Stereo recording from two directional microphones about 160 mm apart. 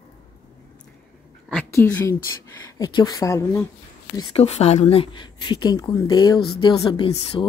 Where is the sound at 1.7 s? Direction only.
15° left (ahead or behind).